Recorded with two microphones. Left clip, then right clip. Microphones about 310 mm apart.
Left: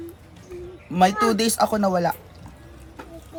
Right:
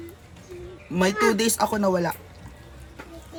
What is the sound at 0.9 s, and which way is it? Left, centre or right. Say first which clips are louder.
Speech: left 3 dB; centre.